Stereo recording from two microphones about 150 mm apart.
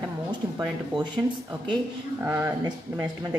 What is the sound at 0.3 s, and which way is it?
Speech, 30° right (ahead or behind).